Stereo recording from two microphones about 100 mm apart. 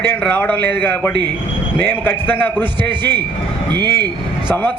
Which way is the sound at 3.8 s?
45° right (ahead or behind).